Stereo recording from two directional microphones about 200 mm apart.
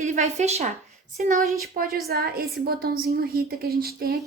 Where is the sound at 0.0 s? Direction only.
35° right (ahead or behind).